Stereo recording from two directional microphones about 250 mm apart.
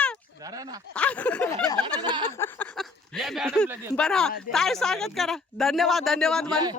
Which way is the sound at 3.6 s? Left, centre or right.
Centre.